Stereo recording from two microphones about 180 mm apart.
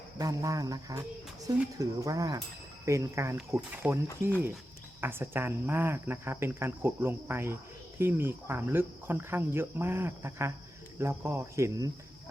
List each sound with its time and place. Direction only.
0.2 s speech: 20° right (ahead or behind)